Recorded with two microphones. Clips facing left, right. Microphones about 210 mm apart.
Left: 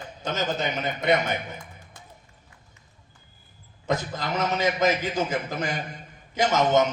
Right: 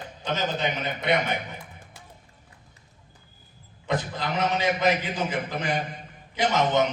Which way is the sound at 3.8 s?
45° left (ahead or behind).